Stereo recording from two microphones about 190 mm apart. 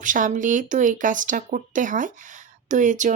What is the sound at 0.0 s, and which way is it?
Speech, 45° right (ahead or behind).